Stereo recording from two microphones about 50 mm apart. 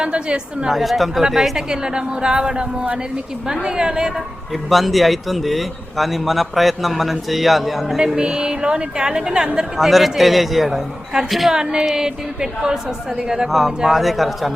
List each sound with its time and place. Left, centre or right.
0.0 s a woman's voice: centre
0.7 s a man's voice: centre
4.7 s a man's voice: centre
7.9 s a woman's voice: centre
11.5 s a woman's voice: centre